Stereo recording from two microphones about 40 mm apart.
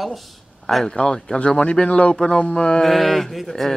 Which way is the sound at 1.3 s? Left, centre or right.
Left.